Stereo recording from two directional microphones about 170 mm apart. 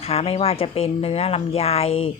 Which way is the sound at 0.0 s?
35° left (ahead or behind).